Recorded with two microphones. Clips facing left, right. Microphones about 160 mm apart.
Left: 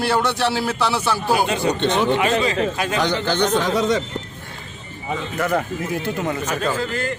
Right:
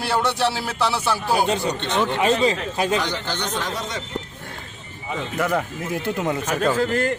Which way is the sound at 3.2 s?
90° left.